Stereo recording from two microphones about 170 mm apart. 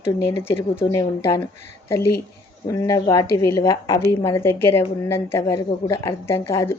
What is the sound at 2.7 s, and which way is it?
A woman's voice, 20° left (ahead or behind).